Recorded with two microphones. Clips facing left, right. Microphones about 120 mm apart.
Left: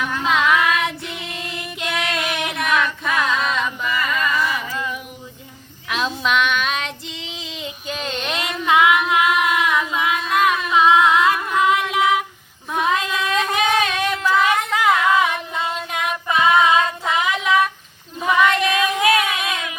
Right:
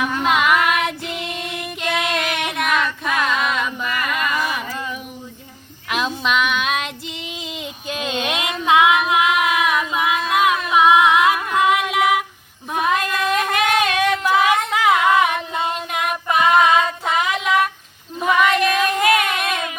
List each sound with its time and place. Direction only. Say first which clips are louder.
0.0 s female singing: right 1 dB; 10° right (ahead or behind)
0.9 s child singing: right 3 dB; centre (ahead or behind)
1.5 s music: right 2 dB; 55° right (ahead or behind)
2.0 s female singing: right 2 dB; centre (ahead or behind); by 4.6 s 15° right (ahead or behind)
6.1 s child singing: left 1 dB; 10° right (ahead or behind)
9.2 s singing: even; 5° right (ahead or behind)
12.7 s female singing: right 1 dB; 5° right (ahead or behind)
15.1 s singing: right 1 dB; 20° right (ahead or behind)
15.7 s child singing: right 1 dB; 5° right (ahead or behind)
18.2 s female singing: right 1 dB; 5° right (ahead or behind)
19.4 s a sound: right 3 dB; 55° right (ahead or behind)